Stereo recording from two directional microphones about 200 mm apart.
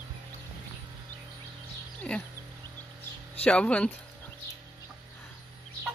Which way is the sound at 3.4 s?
5° left (ahead or behind).